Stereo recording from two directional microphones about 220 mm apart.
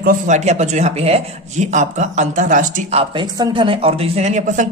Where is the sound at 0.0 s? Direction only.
35° right (ahead or behind).